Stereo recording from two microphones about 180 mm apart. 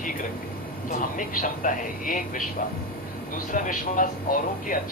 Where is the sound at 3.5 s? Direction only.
45° left (ahead or behind).